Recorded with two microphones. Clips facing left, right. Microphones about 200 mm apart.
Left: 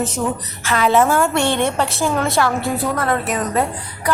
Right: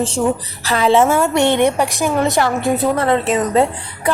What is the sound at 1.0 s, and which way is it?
Speech, 5° right (ahead or behind).